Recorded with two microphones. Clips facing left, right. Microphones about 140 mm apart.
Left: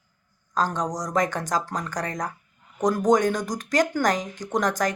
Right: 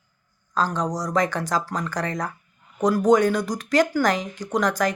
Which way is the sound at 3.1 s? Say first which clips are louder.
Right 3 dB; 45° left (ahead or behind).